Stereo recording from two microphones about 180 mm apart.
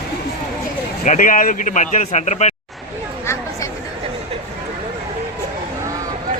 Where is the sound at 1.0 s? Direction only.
45° left (ahead or behind).